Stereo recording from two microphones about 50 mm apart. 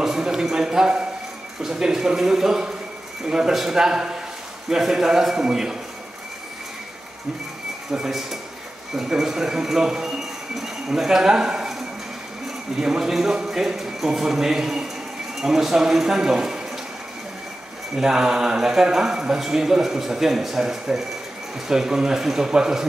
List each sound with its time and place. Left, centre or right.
0.0 s a sound: centre
1.6 s a man's voice: centre
7.9 s a man's voice: centre
17.9 s a man's voice: centre